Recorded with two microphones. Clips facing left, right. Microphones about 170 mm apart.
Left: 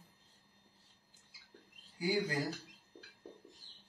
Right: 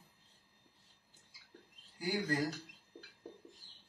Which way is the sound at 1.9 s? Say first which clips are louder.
Left 2 dB; 10° left (ahead or behind).